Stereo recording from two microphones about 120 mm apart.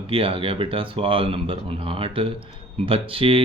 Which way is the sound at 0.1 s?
50° right (ahead or behind).